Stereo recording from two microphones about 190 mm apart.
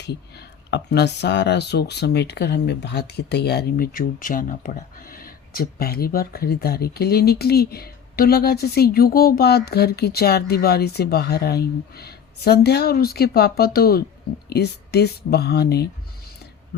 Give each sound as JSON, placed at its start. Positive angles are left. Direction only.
{"t": 0.7, "sound": "speech", "side_deg": 65}